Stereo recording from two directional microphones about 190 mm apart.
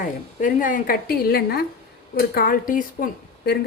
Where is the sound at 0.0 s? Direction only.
45° left (ahead or behind).